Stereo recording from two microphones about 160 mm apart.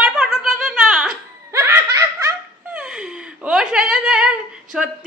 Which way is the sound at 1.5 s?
20° right (ahead or behind).